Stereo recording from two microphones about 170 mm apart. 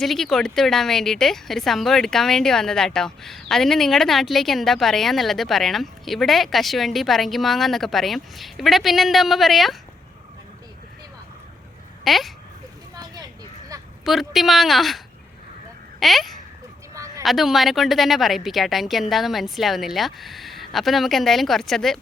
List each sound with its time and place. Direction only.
0.0 s a woman's voice: centre (ahead or behind)
12.0 s a woman's voice: centre (ahead or behind)
14.0 s a woman's voice: centre (ahead or behind)
16.9 s a sound: 20° right (ahead or behind)
17.2 s a woman's voice: centre (ahead or behind)